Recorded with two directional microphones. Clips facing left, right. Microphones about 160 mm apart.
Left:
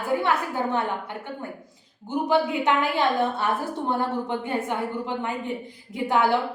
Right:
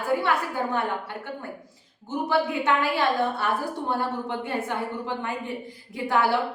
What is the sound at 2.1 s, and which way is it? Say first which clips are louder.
A woman's voice: left 2 dB; 20° left (ahead or behind).